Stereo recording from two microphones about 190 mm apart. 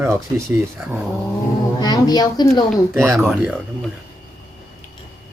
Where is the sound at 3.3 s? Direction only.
Centre (ahead or behind).